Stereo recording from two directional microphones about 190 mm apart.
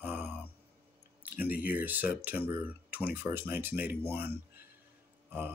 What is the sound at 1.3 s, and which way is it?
Speech, 50° left (ahead or behind).